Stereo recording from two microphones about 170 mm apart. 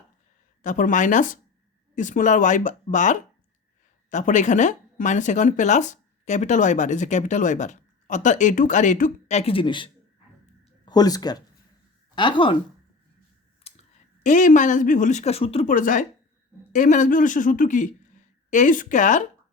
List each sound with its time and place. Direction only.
0.6 s speech: 50° left (ahead or behind); by 12.5 s 30° left (ahead or behind)
13.7 s clicking: 35° left (ahead or behind)
14.3 s speech: 50° left (ahead or behind)
15.7 s speech: 50° left (ahead or behind)